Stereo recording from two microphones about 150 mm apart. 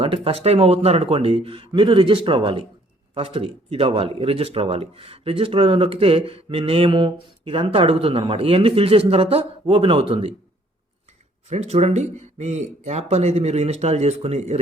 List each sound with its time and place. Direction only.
0.0 s speech: 40° right (ahead or behind)
11.4 s speech: 50° right (ahead or behind)